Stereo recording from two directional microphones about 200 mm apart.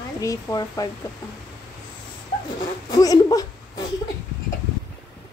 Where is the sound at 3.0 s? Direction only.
20° left (ahead or behind).